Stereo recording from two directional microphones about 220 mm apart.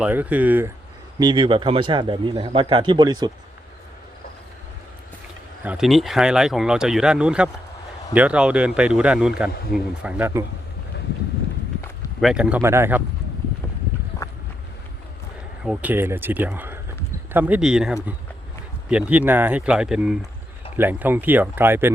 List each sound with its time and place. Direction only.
0.0 s speech: 5° right (ahead or behind)
1.2 s speech: 20° right (ahead or behind)
5.6 s speech: centre (ahead or behind)
12.2 s speech: 5° right (ahead or behind)
15.6 s speech: 5° right (ahead or behind)